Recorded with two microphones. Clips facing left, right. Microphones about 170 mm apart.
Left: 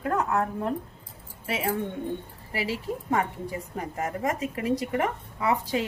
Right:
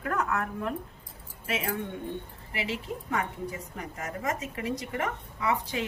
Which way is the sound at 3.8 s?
40° left (ahead or behind).